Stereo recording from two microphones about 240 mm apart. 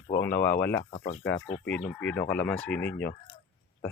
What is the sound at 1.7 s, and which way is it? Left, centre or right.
Speech, centre.